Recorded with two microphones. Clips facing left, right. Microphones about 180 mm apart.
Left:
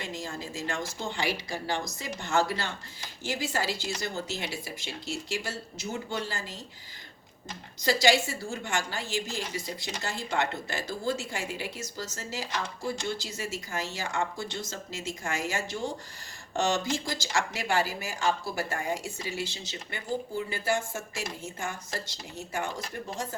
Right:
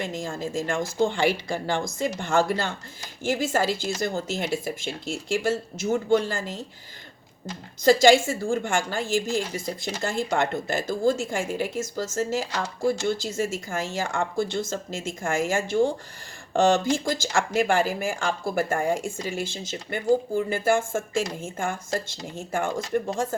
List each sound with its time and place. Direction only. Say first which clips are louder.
0.0 s speech: right 7 dB; 50° right (ahead or behind)
7.9 s speech: right 8 dB; 50° right (ahead or behind)